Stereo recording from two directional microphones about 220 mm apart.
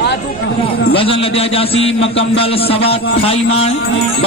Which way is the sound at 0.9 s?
25° left (ahead or behind).